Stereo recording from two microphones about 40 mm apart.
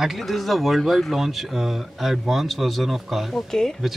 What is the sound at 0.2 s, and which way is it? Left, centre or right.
Speech, centre.